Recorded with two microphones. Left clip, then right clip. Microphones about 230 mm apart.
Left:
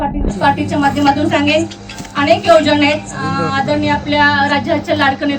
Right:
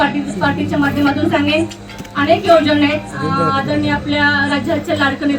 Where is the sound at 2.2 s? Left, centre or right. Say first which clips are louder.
Left 1 dB; left.